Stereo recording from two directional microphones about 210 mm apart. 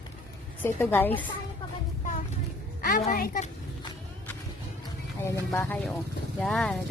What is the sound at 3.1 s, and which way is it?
Speech, 40° left (ahead or behind).